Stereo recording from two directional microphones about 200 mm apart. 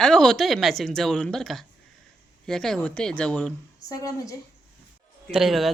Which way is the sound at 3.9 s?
20° left (ahead or behind).